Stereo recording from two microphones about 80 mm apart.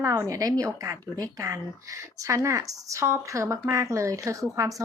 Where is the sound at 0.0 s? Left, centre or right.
Right.